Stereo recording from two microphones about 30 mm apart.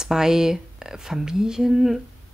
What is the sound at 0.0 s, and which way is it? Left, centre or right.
Speech, centre.